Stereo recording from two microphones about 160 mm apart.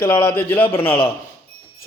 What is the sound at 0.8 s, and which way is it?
Speech, 35° left (ahead or behind).